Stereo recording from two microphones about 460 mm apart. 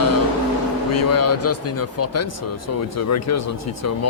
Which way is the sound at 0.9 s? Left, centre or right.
Left.